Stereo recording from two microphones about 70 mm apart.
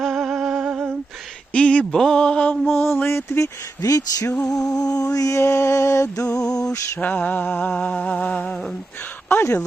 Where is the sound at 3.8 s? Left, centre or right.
Left.